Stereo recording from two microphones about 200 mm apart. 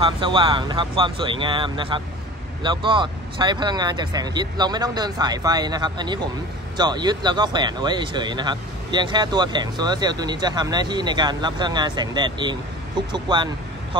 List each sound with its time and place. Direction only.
0.0 s speech: 25° right (ahead or behind)